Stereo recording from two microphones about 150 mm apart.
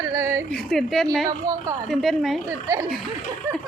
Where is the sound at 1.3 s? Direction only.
20° right (ahead or behind).